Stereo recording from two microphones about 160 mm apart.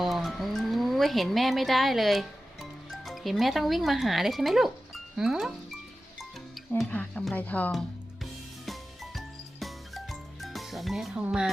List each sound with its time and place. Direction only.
0.0 s speech: centre (ahead or behind)
6.1 s music: centre (ahead or behind)